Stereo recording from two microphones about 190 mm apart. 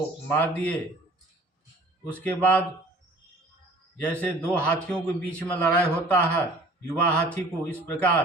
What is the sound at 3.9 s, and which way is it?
A man's voice, 5° left (ahead or behind).